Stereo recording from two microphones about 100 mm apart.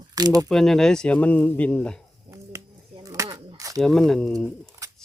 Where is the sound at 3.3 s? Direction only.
60° right (ahead or behind).